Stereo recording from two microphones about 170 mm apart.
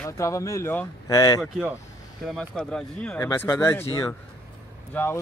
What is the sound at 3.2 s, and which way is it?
Speech, 20° left (ahead or behind).